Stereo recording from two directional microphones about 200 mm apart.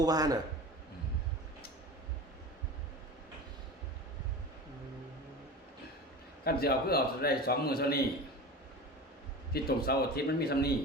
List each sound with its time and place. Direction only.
0.0 s a man's voice: 20° right (ahead or behind)
6.4 s a man's voice: 50° left (ahead or behind)
9.5 s a man's voice: 50° left (ahead or behind)